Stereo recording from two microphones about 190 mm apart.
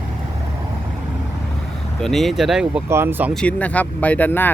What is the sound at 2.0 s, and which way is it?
Speech, centre (ahead or behind).